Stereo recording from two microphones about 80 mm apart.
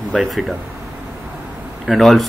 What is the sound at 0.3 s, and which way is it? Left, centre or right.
Speech, centre.